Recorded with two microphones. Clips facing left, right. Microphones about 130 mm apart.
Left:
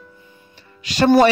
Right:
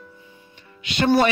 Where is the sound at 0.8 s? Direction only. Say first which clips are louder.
Left 5 dB; 40° left (ahead or behind).